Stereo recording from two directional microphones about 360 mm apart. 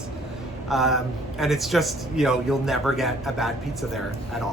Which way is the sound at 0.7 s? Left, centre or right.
Centre.